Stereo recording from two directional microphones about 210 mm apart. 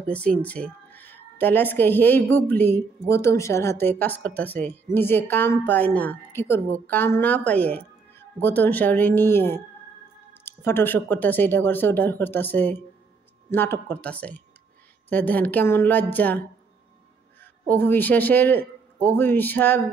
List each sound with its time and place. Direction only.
0.1 s a man's voice: 5° left (ahead or behind)